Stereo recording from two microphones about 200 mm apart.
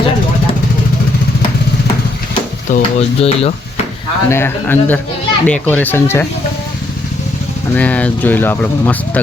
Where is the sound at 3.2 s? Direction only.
30° left (ahead or behind).